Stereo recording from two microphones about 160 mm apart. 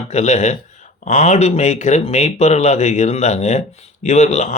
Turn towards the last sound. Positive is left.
turn(degrees=45)  # may be behind; listen again after turning